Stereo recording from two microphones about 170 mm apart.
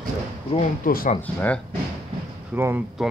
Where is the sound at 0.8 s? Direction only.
55° left (ahead or behind).